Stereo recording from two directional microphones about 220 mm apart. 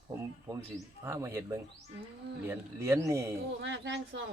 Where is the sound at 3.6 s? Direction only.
55° right (ahead or behind).